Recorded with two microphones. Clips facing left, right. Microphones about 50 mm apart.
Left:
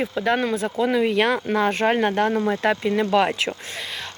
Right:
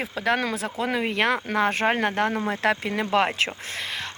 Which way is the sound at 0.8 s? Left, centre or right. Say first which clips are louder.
Left 5 dB; right.